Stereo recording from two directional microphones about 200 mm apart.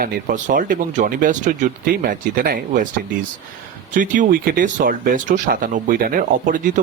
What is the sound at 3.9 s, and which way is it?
Speech, 40° right (ahead or behind).